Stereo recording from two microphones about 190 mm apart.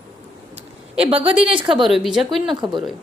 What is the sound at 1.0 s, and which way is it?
Speech, 30° right (ahead or behind).